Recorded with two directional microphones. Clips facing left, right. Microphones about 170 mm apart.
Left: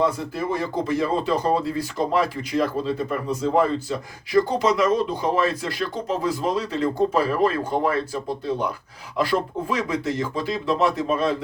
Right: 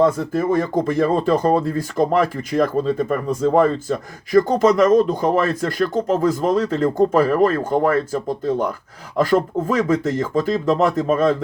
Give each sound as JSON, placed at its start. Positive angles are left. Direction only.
{"t": 0.0, "sound": "speech", "side_deg": -50}